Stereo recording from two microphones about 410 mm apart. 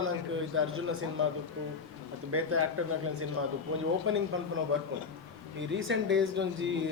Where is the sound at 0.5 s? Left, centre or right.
Right.